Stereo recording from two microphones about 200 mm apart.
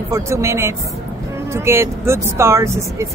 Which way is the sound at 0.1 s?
15° right (ahead or behind).